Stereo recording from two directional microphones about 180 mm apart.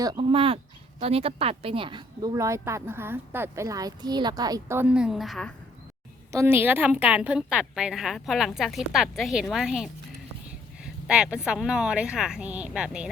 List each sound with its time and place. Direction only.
0.0 s speech: 20° right (ahead or behind); by 5.5 s 5° left (ahead or behind)
6.3 s a woman's voice: 15° right (ahead or behind)